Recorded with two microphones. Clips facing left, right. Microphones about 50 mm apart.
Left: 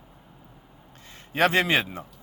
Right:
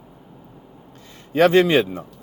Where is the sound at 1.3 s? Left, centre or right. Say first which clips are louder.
Right 7 dB; left.